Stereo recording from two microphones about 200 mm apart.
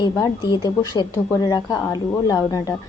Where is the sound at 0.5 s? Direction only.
20° left (ahead or behind).